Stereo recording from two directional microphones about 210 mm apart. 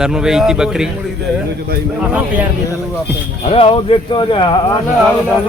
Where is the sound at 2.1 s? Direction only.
5° right (ahead or behind).